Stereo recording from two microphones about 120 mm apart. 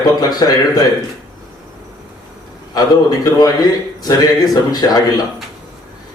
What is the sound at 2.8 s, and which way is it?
Speech, 35° left (ahead or behind).